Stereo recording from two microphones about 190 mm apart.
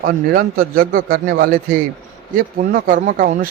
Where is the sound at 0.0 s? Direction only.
50° right (ahead or behind).